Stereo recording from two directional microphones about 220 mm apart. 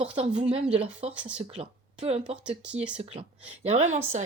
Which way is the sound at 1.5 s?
30° right (ahead or behind).